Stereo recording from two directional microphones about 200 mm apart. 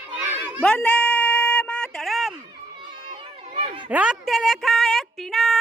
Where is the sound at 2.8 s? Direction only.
25° right (ahead or behind).